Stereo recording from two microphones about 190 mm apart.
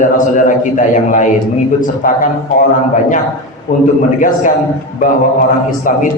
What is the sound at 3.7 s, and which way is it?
Speech, 35° left (ahead or behind).